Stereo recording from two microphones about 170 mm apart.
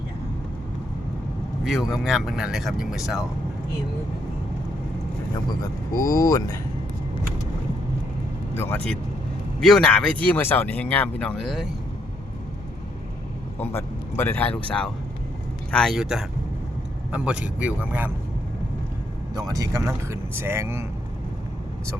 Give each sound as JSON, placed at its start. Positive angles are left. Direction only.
{"t": 1.6, "sound": "speech", "side_deg": 0}
{"t": 6.1, "sound": "speech", "side_deg": 20}
{"t": 8.5, "sound": "speech", "side_deg": 15}
{"t": 13.6, "sound": "speech", "side_deg": 15}
{"t": 19.3, "sound": "speech", "side_deg": -20}